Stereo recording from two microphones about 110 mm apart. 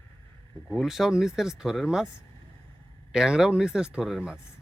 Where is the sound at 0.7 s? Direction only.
Centre (ahead or behind).